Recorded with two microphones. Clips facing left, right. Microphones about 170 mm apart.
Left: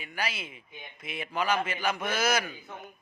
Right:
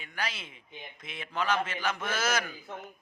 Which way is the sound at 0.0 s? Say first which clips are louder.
Left 2 dB; 10° left (ahead or behind).